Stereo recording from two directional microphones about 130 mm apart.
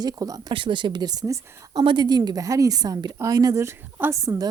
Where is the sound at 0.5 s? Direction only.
40° right (ahead or behind).